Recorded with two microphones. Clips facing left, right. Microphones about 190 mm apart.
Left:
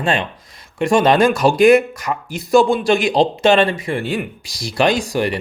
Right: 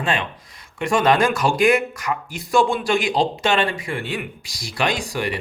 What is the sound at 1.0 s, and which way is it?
Speech, 25° left (ahead or behind).